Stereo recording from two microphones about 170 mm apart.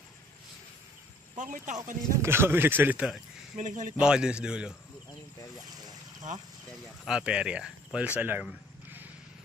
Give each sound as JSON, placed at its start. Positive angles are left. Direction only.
{"t": 1.3, "sound": "speech", "side_deg": -50}
{"t": 2.1, "sound": "speech", "side_deg": -15}
{"t": 3.5, "sound": "speech", "side_deg": -50}
{"t": 3.9, "sound": "a man's voice", "side_deg": -5}
{"t": 6.3, "sound": "speech", "side_deg": -50}
{"t": 7.1, "sound": "speech", "side_deg": -5}